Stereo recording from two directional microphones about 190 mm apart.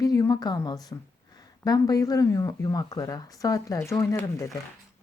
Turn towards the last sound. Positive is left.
turn(degrees=15)  # may be behind; listen again after turning